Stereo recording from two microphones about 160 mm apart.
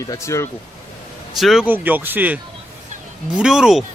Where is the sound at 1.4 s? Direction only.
Centre (ahead or behind).